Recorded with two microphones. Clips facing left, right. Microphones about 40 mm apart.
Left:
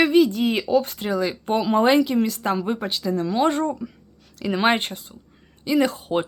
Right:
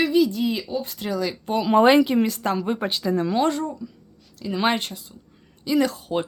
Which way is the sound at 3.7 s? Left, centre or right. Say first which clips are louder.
Left 5 dB; left.